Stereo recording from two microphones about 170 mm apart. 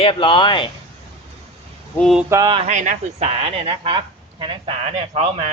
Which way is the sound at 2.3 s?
25° right (ahead or behind).